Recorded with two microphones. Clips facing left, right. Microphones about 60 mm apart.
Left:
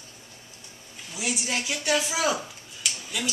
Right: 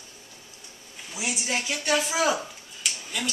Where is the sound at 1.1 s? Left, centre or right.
Right.